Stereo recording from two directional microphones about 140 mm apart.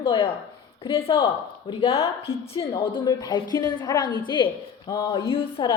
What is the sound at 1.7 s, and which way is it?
A woman's voice, 40° left (ahead or behind).